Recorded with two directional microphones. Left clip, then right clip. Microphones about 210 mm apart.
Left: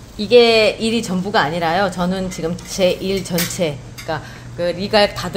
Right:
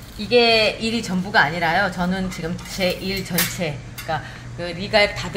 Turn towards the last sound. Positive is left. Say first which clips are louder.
# left 3 dB
turn(degrees=50)  # may be behind; listen again after turning